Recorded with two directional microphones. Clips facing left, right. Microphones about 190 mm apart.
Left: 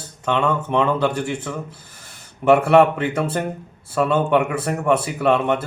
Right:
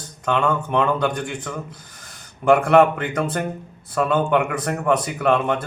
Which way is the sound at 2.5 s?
5° left (ahead or behind).